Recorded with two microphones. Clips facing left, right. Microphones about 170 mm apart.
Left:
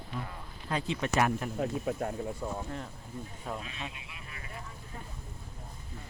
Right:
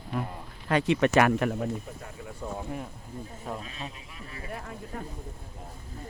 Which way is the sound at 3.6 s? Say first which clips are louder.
Right 2 dB; 35° right (ahead or behind).